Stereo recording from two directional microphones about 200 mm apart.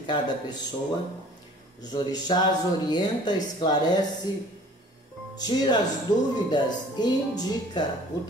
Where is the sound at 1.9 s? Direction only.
20° left (ahead or behind).